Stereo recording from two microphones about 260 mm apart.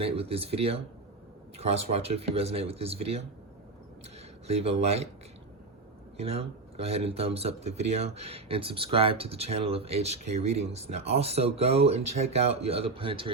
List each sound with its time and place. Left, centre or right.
0.0 s speech: right
4.4 s speech: right
6.1 s speech: right